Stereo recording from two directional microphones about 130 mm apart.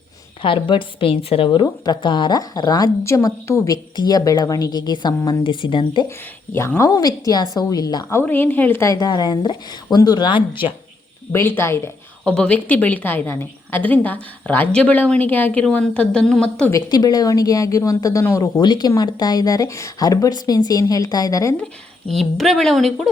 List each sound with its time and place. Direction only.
0.4 s a woman's voice: 40° left (ahead or behind)
6.5 s a woman's voice: 20° left (ahead or behind)
8.1 s a woman's voice: 15° left (ahead or behind); by 10.7 s 40° left (ahead or behind)
11.3 s speech: 15° left (ahead or behind)
12.2 s a woman's voice: 10° left (ahead or behind)
16.7 s speech: 30° left (ahead or behind)
22.1 s speech: centre (ahead or behind)